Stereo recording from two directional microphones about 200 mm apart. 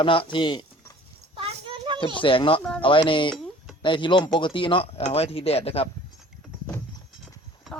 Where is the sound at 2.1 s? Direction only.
25° left (ahead or behind).